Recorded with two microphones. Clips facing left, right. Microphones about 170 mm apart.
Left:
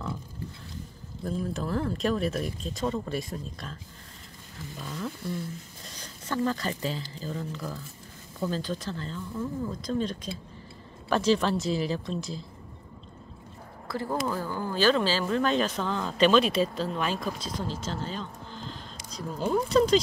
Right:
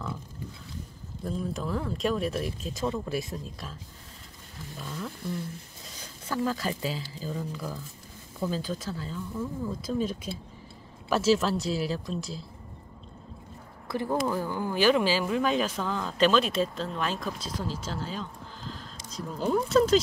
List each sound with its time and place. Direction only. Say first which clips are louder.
1.2 s speech: left 1 dB; centre (ahead or behind)
4.7 s speech: left 2 dB; centre (ahead or behind)
6.2 s speech: left 1 dB; 5° right (ahead or behind)
13.8 s speech: right 2 dB; 20° right (ahead or behind); by 20.0 s centre (ahead or behind)